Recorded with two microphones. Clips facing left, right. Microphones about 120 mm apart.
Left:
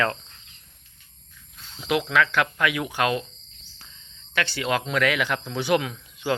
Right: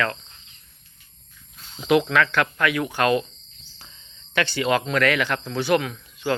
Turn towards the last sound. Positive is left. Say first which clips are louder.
# right 2 dB
turn(degrees=15)  # may be behind; listen again after turning